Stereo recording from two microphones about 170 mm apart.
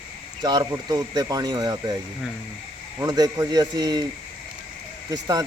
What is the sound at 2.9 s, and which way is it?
A man's voice, 25° right (ahead or behind).